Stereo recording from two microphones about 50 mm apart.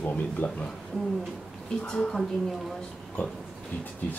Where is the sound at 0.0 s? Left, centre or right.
Left.